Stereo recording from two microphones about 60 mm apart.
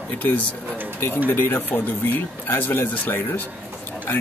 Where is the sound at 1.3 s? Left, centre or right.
Left.